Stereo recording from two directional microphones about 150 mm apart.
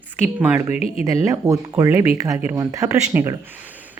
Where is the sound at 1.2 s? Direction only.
20° right (ahead or behind).